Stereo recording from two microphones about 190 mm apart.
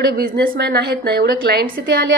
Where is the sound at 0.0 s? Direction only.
55° right (ahead or behind).